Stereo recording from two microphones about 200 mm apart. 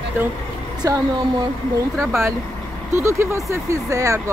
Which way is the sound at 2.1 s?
15° right (ahead or behind).